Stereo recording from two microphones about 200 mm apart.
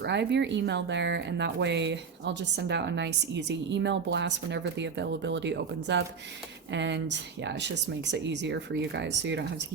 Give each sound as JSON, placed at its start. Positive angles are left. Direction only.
{"t": 0.0, "sound": "speech", "side_deg": -60}